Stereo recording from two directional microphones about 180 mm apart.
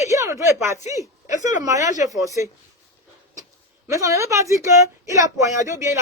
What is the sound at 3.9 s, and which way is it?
Speech, 15° right (ahead or behind).